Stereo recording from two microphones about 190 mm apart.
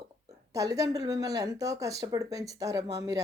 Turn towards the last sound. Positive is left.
turn(degrees=-20)  # may be behind; listen again after turning